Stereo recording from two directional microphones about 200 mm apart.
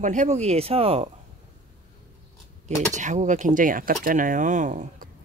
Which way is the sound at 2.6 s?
35° right (ahead or behind).